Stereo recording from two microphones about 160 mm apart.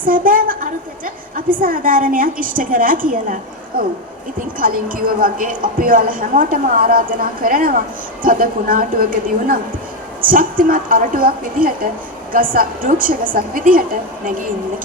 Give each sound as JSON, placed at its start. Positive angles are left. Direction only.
{"t": 0.0, "sound": "a woman's voice", "side_deg": -60}
{"t": 4.6, "sound": "a woman's voice", "side_deg": -60}